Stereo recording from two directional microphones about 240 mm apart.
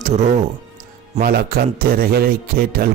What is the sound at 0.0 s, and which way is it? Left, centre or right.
A man's voice, right.